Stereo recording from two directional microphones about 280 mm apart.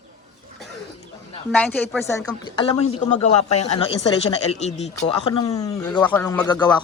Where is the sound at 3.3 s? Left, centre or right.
Left.